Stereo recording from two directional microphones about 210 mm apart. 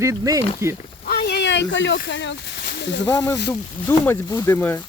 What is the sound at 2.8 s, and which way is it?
Speech, 60° left (ahead or behind).